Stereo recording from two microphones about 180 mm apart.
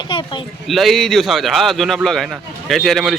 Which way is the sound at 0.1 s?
25° left (ahead or behind).